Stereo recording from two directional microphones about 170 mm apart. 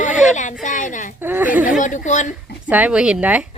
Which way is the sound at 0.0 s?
45° left (ahead or behind).